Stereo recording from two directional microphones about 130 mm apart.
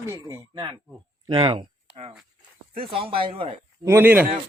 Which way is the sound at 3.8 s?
15° right (ahead or behind).